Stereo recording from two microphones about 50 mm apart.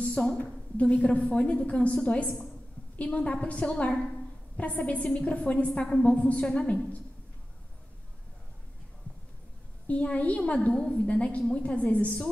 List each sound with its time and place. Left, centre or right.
0.0 s a woman's voice: centre
9.8 s a woman's voice: left
10.7 s a woman's voice: centre
11.1 s a woman's voice: left